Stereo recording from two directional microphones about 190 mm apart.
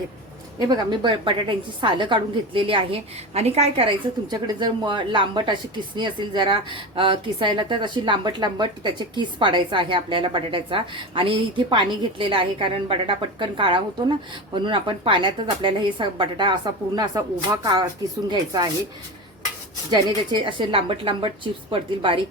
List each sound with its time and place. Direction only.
0.9 s a woman's voice: 25° right (ahead or behind)
19.9 s a woman's voice: 25° right (ahead or behind)